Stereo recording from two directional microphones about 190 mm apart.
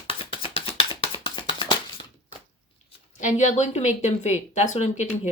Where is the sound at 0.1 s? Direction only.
30° left (ahead or behind).